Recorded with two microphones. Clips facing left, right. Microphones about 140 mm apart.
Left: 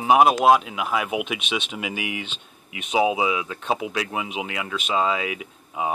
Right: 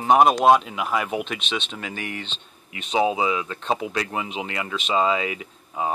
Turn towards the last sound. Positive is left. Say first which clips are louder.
# even
turn(degrees=5)  # may be behind; listen again after turning